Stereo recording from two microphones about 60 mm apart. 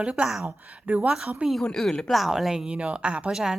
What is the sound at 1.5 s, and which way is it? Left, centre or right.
Speech, centre.